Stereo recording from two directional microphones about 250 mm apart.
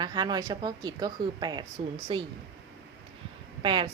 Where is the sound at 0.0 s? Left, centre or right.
Centre.